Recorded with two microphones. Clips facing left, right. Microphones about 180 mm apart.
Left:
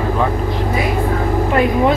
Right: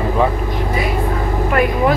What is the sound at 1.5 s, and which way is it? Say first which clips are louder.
Vehicle: left 1 dB; 25° left (ahead or behind).